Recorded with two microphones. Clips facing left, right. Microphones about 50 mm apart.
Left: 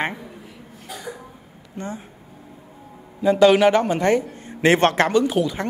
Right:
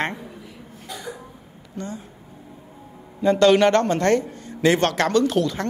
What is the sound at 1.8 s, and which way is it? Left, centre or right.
Speech, left.